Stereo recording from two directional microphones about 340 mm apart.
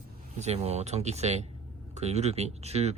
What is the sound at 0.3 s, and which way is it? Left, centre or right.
Speech, centre.